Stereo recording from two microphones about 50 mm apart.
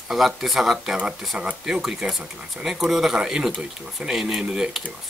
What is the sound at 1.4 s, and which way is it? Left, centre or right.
Speech, centre.